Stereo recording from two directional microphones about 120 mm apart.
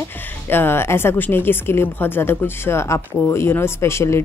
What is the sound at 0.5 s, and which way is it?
A woman's voice, 20° left (ahead or behind).